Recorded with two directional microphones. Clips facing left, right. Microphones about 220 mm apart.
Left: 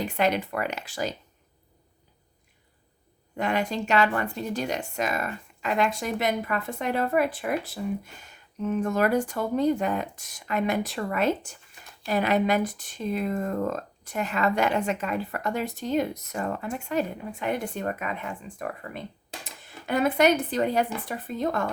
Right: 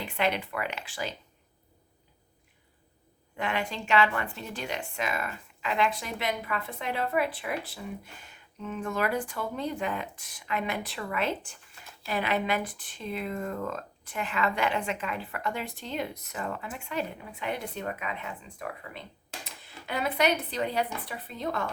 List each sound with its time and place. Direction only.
0.0 s speech: 45° left (ahead or behind)
3.3 s speech: 40° left (ahead or behind)